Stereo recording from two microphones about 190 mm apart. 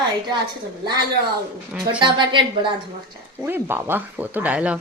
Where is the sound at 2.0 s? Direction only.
25° right (ahead or behind).